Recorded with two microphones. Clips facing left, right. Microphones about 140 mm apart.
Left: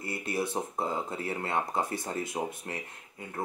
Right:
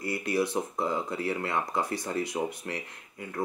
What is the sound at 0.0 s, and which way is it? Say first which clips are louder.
Speech: right 4 dB; 25° left (ahead or behind).